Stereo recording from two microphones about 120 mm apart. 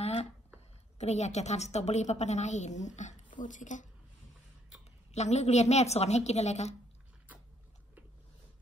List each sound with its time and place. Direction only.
0.0 s a sound: 60° left (ahead or behind)
0.9 s a woman's voice: 70° left (ahead or behind); by 3.8 s 90° left
5.1 s a woman's voice: 70° left (ahead or behind)